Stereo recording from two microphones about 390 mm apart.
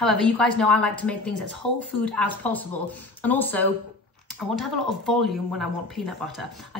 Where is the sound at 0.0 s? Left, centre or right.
Centre.